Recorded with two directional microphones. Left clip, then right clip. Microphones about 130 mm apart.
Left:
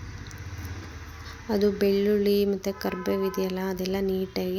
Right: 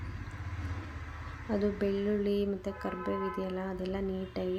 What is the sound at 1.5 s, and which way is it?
Speech, 25° left (ahead or behind).